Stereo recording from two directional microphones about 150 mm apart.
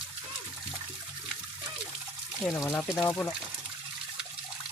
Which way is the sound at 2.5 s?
15° left (ahead or behind).